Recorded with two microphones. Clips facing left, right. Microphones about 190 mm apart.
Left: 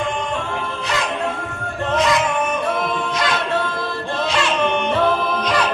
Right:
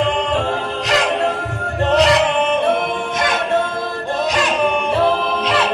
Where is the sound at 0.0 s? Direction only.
70° right (ahead or behind).